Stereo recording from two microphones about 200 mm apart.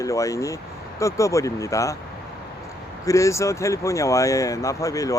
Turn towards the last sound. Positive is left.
turn(degrees=15)  # may be behind; listen again after turning